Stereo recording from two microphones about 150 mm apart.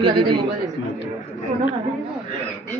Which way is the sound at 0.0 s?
30° right (ahead or behind).